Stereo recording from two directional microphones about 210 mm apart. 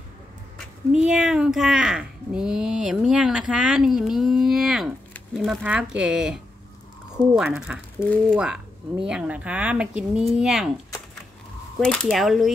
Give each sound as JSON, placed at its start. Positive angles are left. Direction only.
{"t": 0.9, "sound": "speech", "side_deg": -5}
{"t": 11.8, "sound": "speech", "side_deg": 5}